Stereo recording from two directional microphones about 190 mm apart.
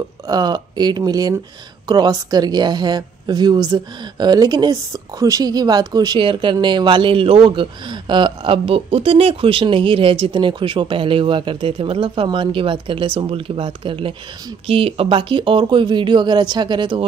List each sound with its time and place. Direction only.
0.3 s a woman's voice: 20° right (ahead or behind)